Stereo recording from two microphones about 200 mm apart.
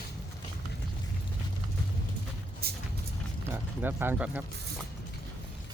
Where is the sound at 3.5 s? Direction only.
10° right (ahead or behind).